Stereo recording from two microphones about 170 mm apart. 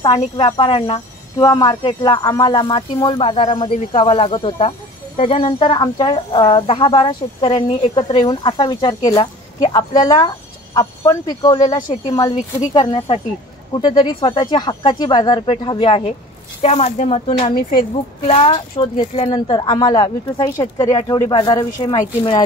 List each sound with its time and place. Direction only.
0.0 s a woman's voice: 25° left (ahead or behind)
17.3 s a woman's voice: 25° left (ahead or behind)
18.2 s a woman's voice: 40° left (ahead or behind)